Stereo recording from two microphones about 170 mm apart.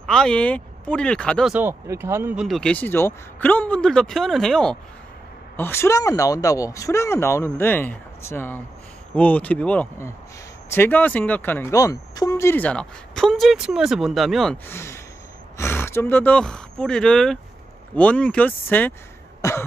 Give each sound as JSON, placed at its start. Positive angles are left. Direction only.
{"t": 0.0, "sound": "speech", "side_deg": 5}
{"t": 1.5, "sound": "speech", "side_deg": -10}
{"t": 5.6, "sound": "speech", "side_deg": 15}
{"t": 14.7, "sound": "speech", "side_deg": 15}
{"t": 19.4, "sound": "cough", "side_deg": 20}